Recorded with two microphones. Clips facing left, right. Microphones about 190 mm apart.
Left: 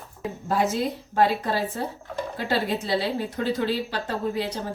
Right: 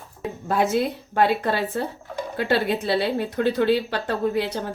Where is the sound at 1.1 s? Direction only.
65° right (ahead or behind).